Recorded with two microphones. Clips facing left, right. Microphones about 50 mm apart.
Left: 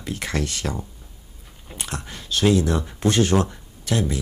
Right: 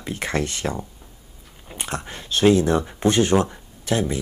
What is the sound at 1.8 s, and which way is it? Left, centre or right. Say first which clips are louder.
Speech: right 3 dB; right.